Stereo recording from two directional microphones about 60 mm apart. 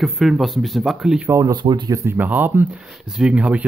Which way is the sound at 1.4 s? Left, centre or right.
Right.